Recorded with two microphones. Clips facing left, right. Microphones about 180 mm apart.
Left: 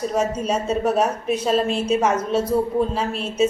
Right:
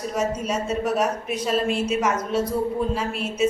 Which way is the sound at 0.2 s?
30° left (ahead or behind).